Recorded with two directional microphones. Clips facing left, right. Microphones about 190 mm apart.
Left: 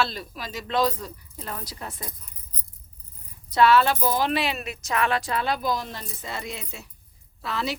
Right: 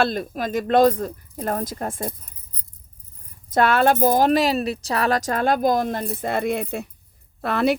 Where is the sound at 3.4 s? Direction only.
50° right (ahead or behind).